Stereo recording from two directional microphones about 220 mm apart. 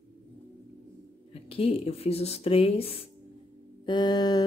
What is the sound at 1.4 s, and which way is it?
Speech, 25° left (ahead or behind).